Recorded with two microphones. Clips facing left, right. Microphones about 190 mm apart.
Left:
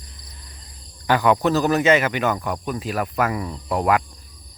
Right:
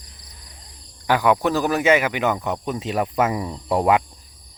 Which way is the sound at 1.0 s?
10° right (ahead or behind).